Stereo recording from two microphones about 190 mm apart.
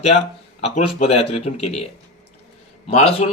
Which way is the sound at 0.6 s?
35° left (ahead or behind).